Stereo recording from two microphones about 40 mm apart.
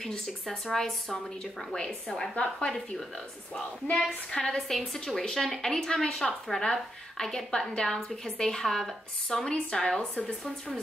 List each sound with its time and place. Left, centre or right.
0.0 s a woman's voice: centre
1.1 s a woman's voice: centre
1.9 s a woman's voice: centre
2.3 s a woman's voice: left
3.9 s a woman's voice: centre